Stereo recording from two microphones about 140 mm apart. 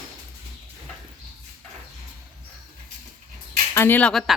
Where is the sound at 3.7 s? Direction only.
15° left (ahead or behind).